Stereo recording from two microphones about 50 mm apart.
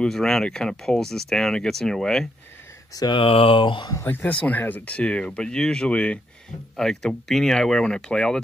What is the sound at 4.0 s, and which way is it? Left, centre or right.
Speech, left.